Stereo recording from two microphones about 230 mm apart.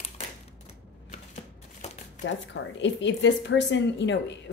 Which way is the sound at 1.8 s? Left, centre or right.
Left.